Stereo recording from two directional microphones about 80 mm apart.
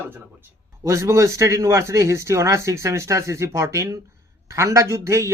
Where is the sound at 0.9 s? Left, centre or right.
Right.